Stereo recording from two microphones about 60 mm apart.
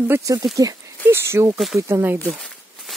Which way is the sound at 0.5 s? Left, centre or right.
Right.